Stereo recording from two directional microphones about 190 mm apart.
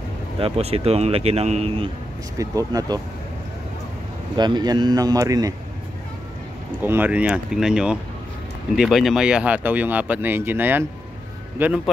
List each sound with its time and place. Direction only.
0.4 s speech: 30° right (ahead or behind)
2.3 s speech: 20° right (ahead or behind)
4.4 s speech: 20° right (ahead or behind)
6.8 s speech: 10° right (ahead or behind)